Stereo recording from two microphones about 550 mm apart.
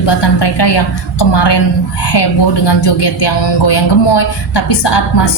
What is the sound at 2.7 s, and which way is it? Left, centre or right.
A woman's voice, left.